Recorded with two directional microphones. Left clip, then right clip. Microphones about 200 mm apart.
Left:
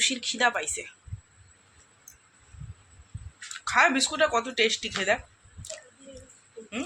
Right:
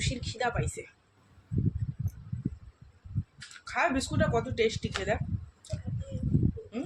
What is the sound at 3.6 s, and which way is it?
A woman's voice, 5° right (ahead or behind).